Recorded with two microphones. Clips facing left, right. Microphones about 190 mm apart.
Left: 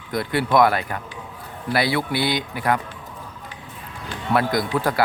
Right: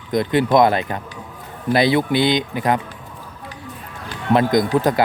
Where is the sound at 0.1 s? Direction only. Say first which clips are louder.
Right 4 dB; 20° right (ahead or behind).